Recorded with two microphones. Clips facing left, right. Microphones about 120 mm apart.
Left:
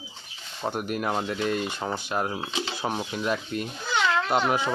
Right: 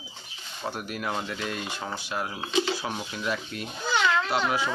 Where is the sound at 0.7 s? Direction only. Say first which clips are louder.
Left 5 dB; 50° left (ahead or behind).